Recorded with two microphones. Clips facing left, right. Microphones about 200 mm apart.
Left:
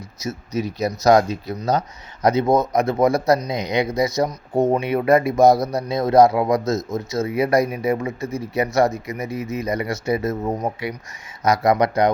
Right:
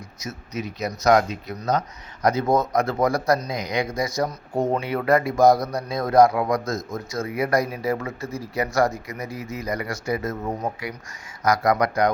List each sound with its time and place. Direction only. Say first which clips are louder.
0.2 s speech: left 6 dB; 35° left (ahead or behind)